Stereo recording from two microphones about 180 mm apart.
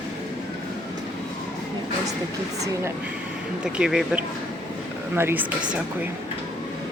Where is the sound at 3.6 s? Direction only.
5° right (ahead or behind).